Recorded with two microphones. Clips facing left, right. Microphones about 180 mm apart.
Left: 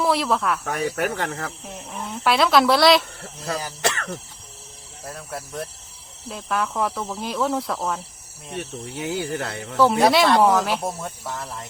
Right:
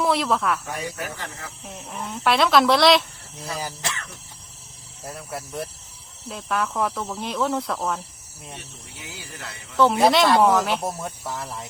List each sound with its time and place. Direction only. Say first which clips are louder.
0.0 s speech: left 1 dB; centre (ahead or behind)
0.6 s speech: left 7 dB; 70° left (ahead or behind)
1.6 s speech: left 1 dB; centre (ahead or behind)
3.8 s speech: left 8 dB; 70° left (ahead or behind)
5.0 s speech: even; centre (ahead or behind)
9.0 s speech: left 14 dB; 65° left (ahead or behind)
9.7 s speech: left 1 dB; 5° left (ahead or behind)